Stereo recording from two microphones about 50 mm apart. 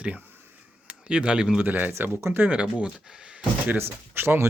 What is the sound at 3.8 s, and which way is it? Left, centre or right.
Speech, right.